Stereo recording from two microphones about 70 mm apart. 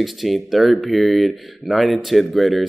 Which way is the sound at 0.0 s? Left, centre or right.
Centre.